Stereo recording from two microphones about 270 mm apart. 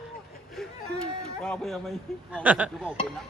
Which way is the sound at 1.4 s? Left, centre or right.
Centre.